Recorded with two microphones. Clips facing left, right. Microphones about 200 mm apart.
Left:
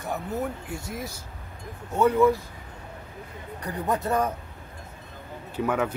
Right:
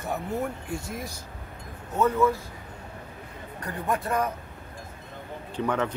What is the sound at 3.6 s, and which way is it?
Speech, 20° left (ahead or behind).